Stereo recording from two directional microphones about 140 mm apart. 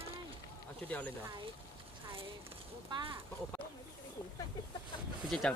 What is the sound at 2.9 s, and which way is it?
Speech, 35° right (ahead or behind).